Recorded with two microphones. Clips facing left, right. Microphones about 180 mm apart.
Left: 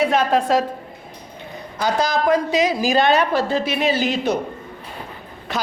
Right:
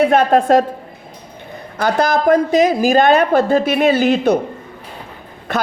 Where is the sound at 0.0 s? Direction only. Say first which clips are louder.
Right 5 dB; 55° right (ahead or behind).